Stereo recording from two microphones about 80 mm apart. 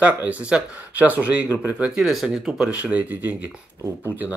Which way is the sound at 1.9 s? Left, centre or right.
Centre.